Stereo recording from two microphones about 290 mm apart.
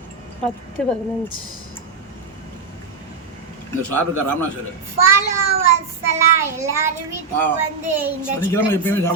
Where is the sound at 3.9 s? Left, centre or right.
Right.